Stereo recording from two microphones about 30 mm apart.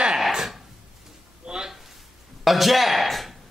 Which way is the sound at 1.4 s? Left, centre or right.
Right.